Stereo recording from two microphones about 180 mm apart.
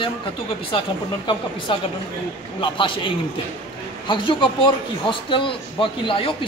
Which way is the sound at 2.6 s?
30° left (ahead or behind).